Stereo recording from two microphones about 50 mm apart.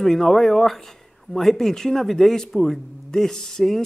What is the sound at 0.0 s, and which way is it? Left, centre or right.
Speech, centre.